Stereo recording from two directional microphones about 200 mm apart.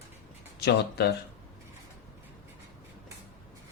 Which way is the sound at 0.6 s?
55° left (ahead or behind).